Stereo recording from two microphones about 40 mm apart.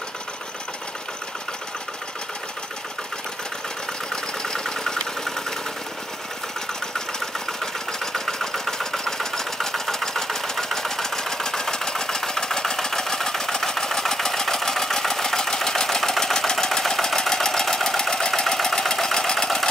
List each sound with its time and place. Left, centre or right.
4.1 s engine: centre
7.2 s engine: centre